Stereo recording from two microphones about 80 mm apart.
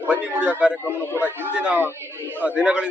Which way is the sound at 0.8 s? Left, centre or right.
Left.